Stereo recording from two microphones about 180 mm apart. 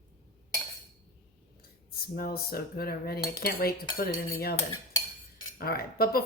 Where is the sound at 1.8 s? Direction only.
55° left (ahead or behind).